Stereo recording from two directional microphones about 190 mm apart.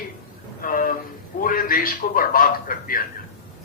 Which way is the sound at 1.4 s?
50° left (ahead or behind).